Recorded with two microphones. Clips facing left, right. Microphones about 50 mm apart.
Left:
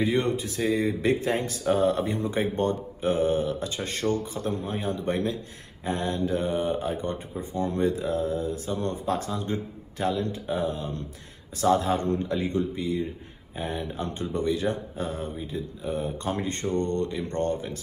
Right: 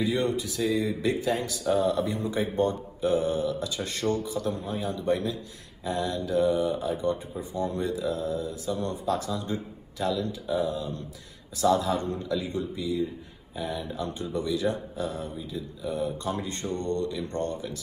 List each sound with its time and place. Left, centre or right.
0.0 s speech: left